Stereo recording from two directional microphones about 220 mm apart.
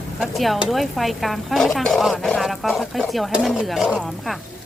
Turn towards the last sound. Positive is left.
turn(degrees=0)  # may be behind; listen again after turning